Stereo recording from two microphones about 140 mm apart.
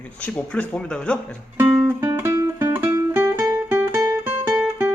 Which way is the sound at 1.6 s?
10° right (ahead or behind).